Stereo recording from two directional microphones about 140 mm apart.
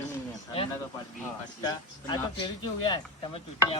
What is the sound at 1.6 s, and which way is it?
Speech, 30° left (ahead or behind).